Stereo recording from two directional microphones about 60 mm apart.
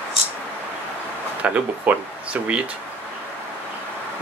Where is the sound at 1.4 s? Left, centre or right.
Right.